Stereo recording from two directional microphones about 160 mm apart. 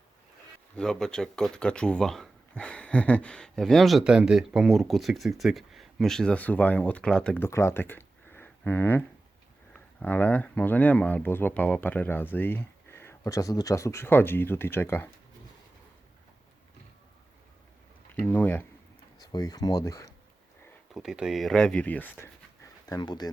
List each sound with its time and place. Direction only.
0.8 s speech: 5° left (ahead or behind)
18.2 s speech: 10° left (ahead or behind)
19.2 s speech: 25° left (ahead or behind)
20.9 s speech: 5° right (ahead or behind); by 22.3 s 10° left (ahead or behind)
22.9 s speech: 25° left (ahead or behind)